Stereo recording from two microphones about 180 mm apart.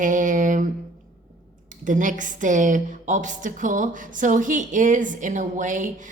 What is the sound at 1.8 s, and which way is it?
A woman's voice, 45° right (ahead or behind).